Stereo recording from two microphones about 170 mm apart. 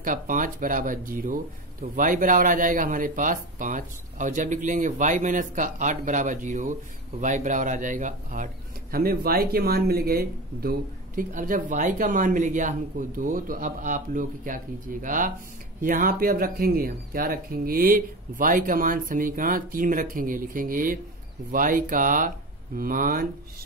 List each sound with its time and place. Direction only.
0.0 s speech: 55° right (ahead or behind)
8.9 s speech: 60° right (ahead or behind)